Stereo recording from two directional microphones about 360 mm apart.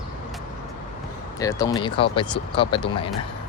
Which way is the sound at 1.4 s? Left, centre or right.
Centre.